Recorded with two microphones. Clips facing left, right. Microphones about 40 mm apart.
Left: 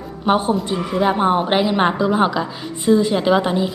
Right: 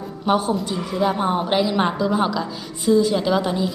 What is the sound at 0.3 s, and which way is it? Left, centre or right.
A woman's voice, left.